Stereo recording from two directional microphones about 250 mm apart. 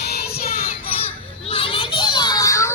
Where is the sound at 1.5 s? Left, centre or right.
Left.